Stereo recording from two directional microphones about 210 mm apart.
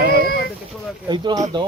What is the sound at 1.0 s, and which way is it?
Speech, 20° right (ahead or behind).